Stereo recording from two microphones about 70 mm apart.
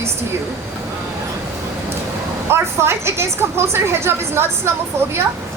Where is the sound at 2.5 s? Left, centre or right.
Right.